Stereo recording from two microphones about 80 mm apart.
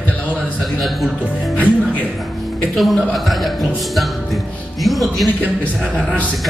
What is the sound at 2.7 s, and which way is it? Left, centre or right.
Speech, centre.